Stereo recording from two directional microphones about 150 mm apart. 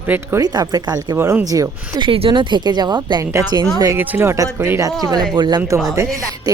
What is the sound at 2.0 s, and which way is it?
A woman's voice, 35° right (ahead or behind).